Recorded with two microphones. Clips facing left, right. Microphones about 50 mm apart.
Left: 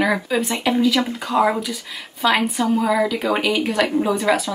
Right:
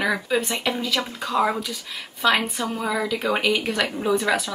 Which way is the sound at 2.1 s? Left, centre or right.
Left.